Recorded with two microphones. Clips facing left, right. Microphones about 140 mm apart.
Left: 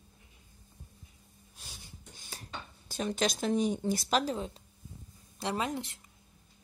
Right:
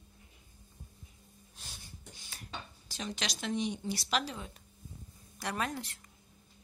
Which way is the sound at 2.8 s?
50° left (ahead or behind).